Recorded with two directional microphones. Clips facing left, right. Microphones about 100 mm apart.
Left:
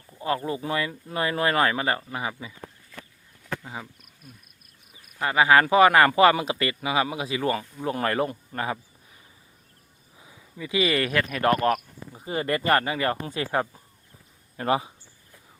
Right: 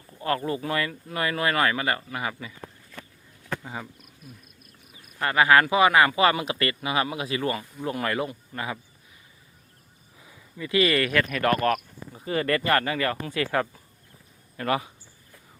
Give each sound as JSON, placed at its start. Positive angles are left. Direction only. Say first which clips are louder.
{"t": 0.2, "sound": "speech", "louder": "even", "side_deg": 20}
{"t": 3.6, "sound": "speech", "louder": "right 1 dB", "side_deg": 0}
{"t": 5.2, "sound": "speech", "louder": "even", "side_deg": 25}
{"t": 10.2, "sound": "speech", "louder": "right 1 dB", "side_deg": 20}